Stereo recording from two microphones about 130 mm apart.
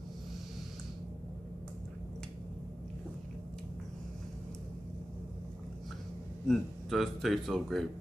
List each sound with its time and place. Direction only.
6.4 s speech: centre (ahead or behind)